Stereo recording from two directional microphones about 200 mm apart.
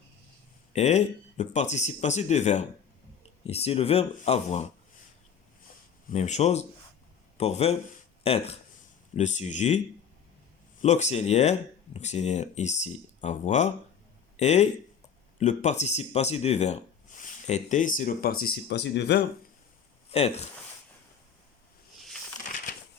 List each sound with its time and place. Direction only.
0.7 s speech: 35° left (ahead or behind)
6.1 s speech: 35° left (ahead or behind)
10.8 s speech: 35° left (ahead or behind)
18.4 s speech: 60° left (ahead or behind)
20.1 s speech: 30° left (ahead or behind)